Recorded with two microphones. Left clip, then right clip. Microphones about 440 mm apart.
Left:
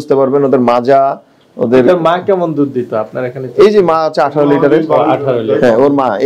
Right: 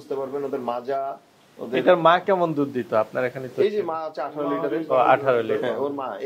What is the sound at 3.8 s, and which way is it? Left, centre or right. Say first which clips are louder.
Speech: left 18 dB; left.